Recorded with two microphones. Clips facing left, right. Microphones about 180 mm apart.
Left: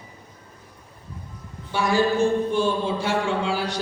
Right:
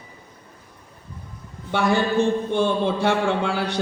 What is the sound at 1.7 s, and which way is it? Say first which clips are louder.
A man's voice: even; 60° right (ahead or behind).